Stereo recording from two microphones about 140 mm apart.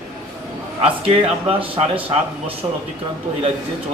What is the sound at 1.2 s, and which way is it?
Speech, 45° right (ahead or behind).